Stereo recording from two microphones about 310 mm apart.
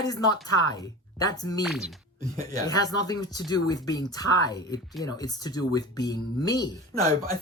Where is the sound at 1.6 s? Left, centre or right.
Centre.